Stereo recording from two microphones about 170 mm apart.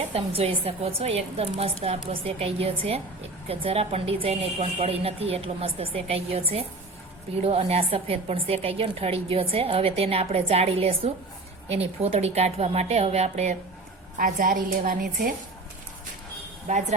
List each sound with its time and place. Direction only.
0.1 s a woman's voice: 35° right (ahead or behind)
14.2 s a woman's voice: 55° right (ahead or behind)
16.7 s speech: 45° right (ahead or behind)